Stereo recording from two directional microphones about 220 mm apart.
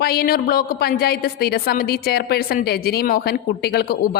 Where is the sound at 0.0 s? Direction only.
45° left (ahead or behind).